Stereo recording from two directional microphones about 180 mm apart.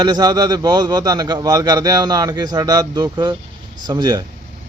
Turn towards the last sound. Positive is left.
turn(degrees=-25)  # may be behind; listen again after turning